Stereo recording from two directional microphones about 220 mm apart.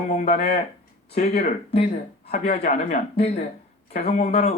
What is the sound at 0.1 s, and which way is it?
Speech, 30° left (ahead or behind).